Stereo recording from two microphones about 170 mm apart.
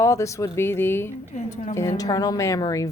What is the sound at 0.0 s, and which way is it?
A woman's voice, 20° left (ahead or behind).